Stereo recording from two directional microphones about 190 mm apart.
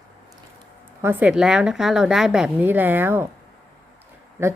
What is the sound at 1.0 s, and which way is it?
A woman's voice, 10° right (ahead or behind).